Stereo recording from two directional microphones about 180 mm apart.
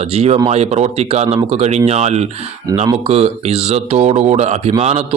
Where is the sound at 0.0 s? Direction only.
35° right (ahead or behind).